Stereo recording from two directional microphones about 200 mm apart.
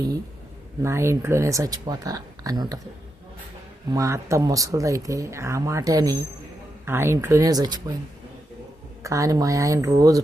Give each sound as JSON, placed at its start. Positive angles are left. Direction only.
{"t": 0.8, "sound": "speech", "side_deg": -15}
{"t": 3.9, "sound": "speech", "side_deg": -15}
{"t": 9.0, "sound": "speech", "side_deg": -15}